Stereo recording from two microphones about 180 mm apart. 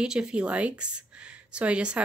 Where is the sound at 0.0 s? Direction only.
5° right (ahead or behind).